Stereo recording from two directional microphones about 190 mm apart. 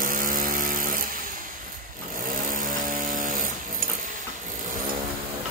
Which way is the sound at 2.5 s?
45° right (ahead or behind).